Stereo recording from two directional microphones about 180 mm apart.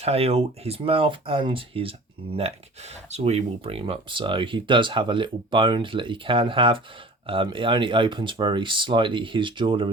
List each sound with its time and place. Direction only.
0.0 s speech: 35° right (ahead or behind)